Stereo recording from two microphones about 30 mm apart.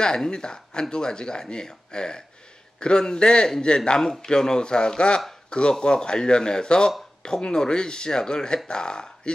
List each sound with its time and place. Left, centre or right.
0.3 s speech: left